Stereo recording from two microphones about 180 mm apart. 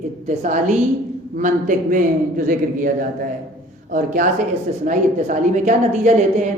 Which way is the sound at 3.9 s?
45° right (ahead or behind).